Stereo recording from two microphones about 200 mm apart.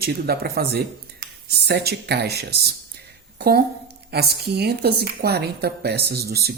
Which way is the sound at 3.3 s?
50° right (ahead or behind).